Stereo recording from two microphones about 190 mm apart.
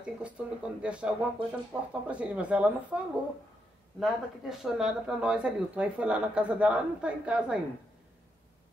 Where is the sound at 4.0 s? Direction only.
Centre (ahead or behind).